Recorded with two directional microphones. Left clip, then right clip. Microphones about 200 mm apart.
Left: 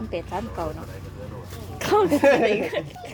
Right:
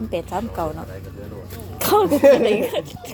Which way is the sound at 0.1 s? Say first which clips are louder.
Right 4 dB; 15° right (ahead or behind).